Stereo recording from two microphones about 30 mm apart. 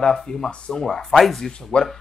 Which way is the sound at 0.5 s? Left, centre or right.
Left.